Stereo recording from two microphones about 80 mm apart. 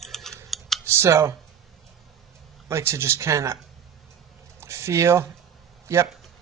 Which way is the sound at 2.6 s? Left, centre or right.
Right.